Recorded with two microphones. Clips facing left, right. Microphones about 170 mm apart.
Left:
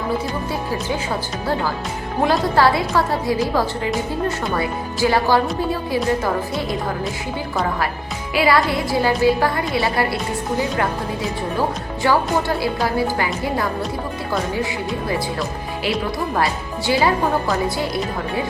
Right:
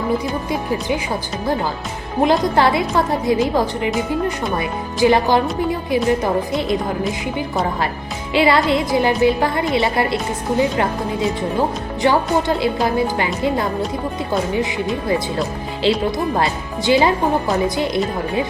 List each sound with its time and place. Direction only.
2.2 s a woman's voice: 20° right (ahead or behind)
8.3 s a woman's voice: 25° right (ahead or behind)
12.0 s a woman's voice: 20° right (ahead or behind)